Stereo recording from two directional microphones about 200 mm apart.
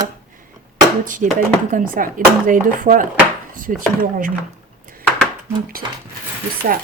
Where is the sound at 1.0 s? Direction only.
40° right (ahead or behind).